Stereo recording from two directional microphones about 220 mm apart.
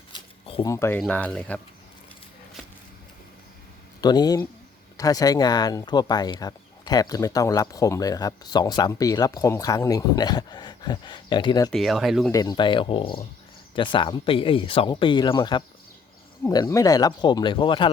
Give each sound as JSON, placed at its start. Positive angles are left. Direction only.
{"t": 0.1, "sound": "a sound", "side_deg": 20}
{"t": 0.7, "sound": "speech", "side_deg": 10}
{"t": 4.0, "sound": "speech", "side_deg": 20}
{"t": 11.7, "sound": "speech", "side_deg": 0}
{"t": 12.3, "sound": "speech", "side_deg": 20}